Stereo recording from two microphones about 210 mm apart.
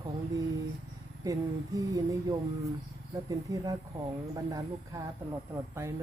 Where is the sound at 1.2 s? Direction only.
15° right (ahead or behind).